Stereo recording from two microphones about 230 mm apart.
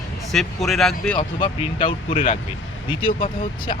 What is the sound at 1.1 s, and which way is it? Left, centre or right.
Speech, left.